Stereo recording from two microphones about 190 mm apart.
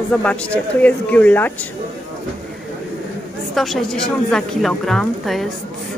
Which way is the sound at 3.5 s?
Centre (ahead or behind).